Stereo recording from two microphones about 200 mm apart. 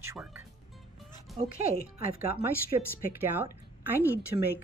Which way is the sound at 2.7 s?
25° right (ahead or behind).